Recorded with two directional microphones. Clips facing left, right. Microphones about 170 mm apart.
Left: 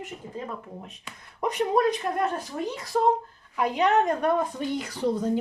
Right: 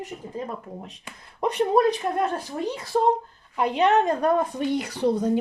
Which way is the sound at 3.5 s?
30° right (ahead or behind).